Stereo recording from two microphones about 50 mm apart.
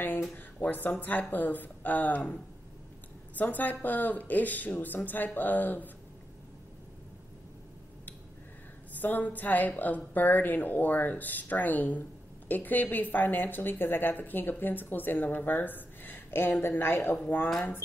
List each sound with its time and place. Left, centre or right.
0.6 s a woman's voice: left
3.3 s a woman's voice: left
8.9 s a woman's voice: left